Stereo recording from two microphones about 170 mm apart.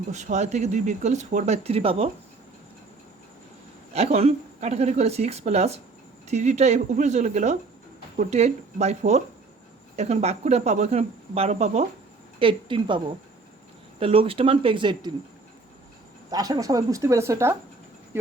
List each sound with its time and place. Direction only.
0.1 s speech: 45° right (ahead or behind)
3.9 s speech: 40° right (ahead or behind)
14.0 s speech: 35° right (ahead or behind)
16.3 s speech: 20° right (ahead or behind)